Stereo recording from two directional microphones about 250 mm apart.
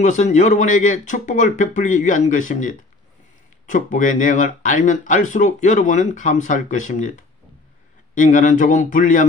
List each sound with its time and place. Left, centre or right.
0.0 s speech: left